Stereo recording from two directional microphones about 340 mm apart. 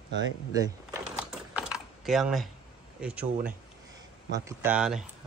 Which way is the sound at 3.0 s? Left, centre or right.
Centre.